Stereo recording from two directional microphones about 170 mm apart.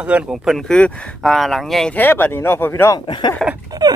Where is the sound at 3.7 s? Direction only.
25° right (ahead or behind).